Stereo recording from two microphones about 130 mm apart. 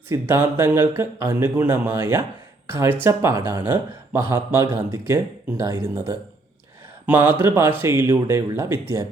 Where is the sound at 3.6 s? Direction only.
15° right (ahead or behind).